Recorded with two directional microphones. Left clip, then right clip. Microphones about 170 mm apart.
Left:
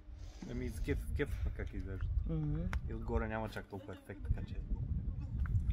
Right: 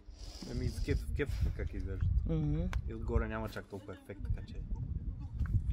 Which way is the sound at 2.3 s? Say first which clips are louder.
Right 5 dB; 55° right (ahead or behind).